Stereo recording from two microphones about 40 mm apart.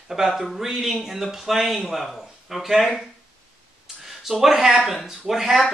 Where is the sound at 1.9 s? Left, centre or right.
Centre.